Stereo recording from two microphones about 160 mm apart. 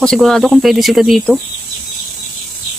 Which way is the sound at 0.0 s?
5° left (ahead or behind).